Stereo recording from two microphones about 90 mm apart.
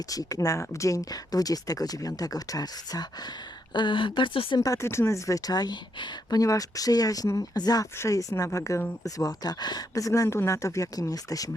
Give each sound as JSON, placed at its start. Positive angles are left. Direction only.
{"t": 0.1, "sound": "speech", "side_deg": 40}
{"t": 4.6, "sound": "speech", "side_deg": 35}
{"t": 6.4, "sound": "speech", "side_deg": 40}
{"t": 7.9, "sound": "speech", "side_deg": 35}